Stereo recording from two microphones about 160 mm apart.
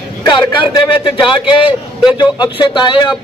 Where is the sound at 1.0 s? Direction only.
30° left (ahead or behind).